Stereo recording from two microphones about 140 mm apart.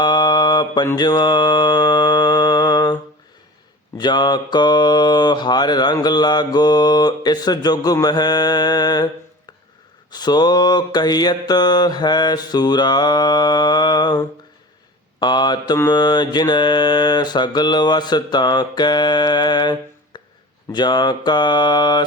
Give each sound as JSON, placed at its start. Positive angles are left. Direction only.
{"t": 0.0, "sound": "mantra", "side_deg": 30}
{"t": 10.1, "sound": "mantra", "side_deg": 30}
{"t": 15.2, "sound": "mantra", "side_deg": 30}
{"t": 20.1, "sound": "a sound", "side_deg": 30}
{"t": 20.7, "sound": "mantra", "side_deg": 30}